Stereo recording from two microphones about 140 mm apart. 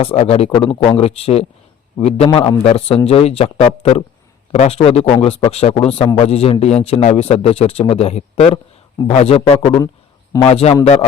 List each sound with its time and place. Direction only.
0.0 s a man's voice: 45° left (ahead or behind)